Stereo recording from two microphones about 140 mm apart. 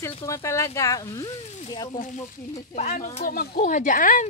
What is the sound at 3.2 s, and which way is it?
Speech, 90° left.